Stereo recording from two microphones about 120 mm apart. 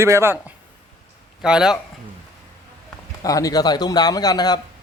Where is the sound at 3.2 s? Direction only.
30° left (ahead or behind).